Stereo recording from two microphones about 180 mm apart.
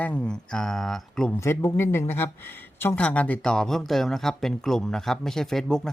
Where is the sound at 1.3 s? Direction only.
15° left (ahead or behind).